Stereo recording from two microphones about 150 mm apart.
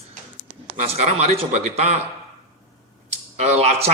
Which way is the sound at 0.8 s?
45° right (ahead or behind).